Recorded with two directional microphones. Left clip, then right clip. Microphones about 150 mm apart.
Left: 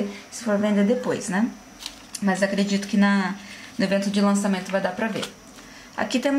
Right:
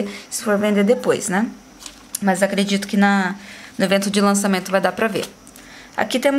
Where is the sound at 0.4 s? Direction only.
40° right (ahead or behind).